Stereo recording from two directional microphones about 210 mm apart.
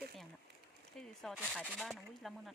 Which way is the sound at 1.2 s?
Centre (ahead or behind).